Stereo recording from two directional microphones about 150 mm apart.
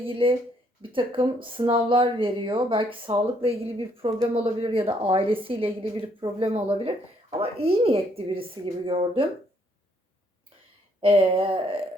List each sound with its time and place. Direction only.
0.0 s speech: 35° right (ahead or behind)
11.0 s speech: 35° right (ahead or behind)